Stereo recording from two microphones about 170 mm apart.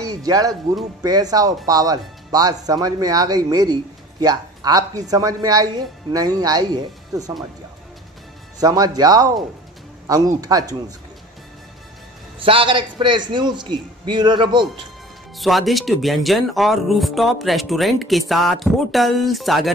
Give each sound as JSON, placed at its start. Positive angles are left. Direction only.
{"t": 0.0, "sound": "speech", "side_deg": -20}
{"t": 8.5, "sound": "speech", "side_deg": -20}
{"t": 12.4, "sound": "speech", "side_deg": -30}
{"t": 15.3, "sound": "speech", "side_deg": 0}